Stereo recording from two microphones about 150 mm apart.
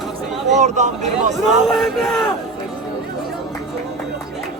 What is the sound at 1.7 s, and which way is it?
Speech, centre (ahead or behind).